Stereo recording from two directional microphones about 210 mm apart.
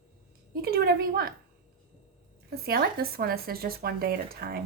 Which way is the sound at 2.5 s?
45° right (ahead or behind).